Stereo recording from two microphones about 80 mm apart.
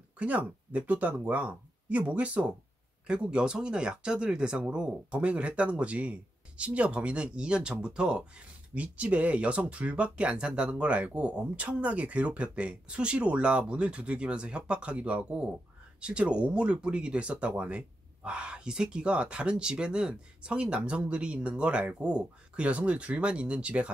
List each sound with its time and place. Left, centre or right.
0.2 s speech: centre